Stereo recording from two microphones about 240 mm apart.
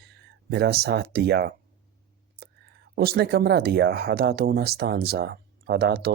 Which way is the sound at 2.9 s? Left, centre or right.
Right.